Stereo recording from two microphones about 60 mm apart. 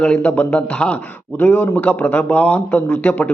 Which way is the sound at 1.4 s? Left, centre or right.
Left.